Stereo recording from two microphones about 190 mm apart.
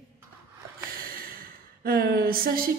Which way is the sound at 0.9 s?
50° right (ahead or behind).